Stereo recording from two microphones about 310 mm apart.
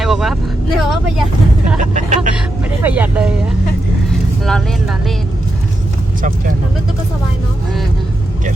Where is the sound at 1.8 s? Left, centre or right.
Right.